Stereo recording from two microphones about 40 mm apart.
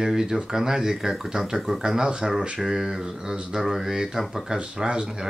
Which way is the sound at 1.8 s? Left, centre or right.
Centre.